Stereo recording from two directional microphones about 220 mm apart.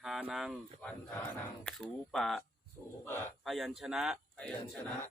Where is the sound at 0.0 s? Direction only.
Centre (ahead or behind).